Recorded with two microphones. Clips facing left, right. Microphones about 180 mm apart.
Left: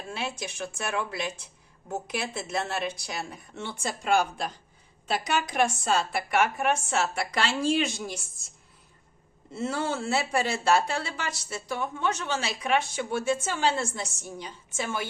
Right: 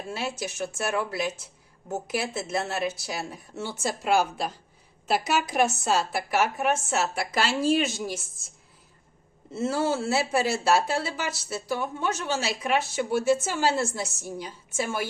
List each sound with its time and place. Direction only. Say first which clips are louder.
0.1 s speech: right 2 dB; 5° right (ahead or behind)
9.6 s speech: right 4 dB; 5° right (ahead or behind)